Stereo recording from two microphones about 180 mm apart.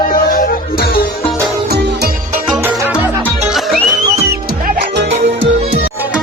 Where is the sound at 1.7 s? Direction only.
65° right (ahead or behind).